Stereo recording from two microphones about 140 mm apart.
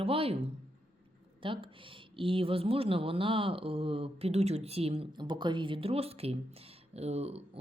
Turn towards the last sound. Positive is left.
turn(degrees=-45)  # may be behind; listen again after turning